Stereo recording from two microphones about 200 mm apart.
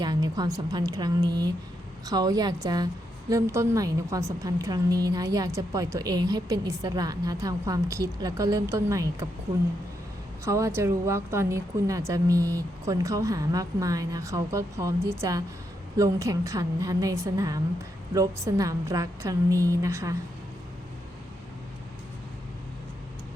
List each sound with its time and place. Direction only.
0.0 s a woman's voice: 20° right (ahead or behind)
10.4 s a woman's voice: 15° right (ahead or behind)